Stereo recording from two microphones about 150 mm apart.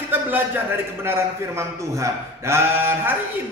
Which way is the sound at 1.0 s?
15° right (ahead or behind).